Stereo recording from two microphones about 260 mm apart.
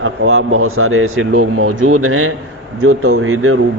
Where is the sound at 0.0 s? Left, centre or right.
Right.